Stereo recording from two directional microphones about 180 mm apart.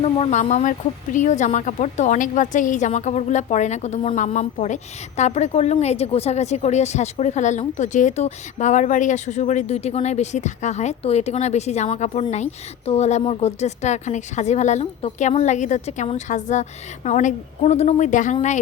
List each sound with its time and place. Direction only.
0.0 s speech: 40° left (ahead or behind)